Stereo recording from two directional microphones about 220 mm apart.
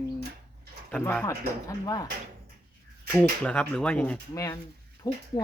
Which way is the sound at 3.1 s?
5° left (ahead or behind).